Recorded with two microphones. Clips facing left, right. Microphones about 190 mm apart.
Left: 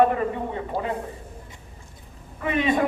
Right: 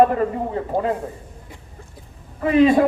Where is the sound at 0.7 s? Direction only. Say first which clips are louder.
Right 7 dB; 50° right (ahead or behind).